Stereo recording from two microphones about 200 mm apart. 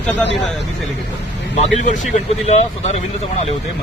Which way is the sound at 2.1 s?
35° left (ahead or behind).